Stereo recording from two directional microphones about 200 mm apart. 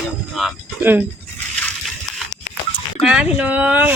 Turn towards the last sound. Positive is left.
turn(degrees=-5)  # may be behind; listen again after turning